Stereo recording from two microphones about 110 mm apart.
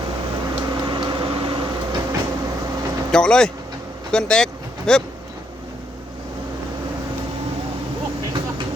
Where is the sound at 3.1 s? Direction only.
5° left (ahead or behind).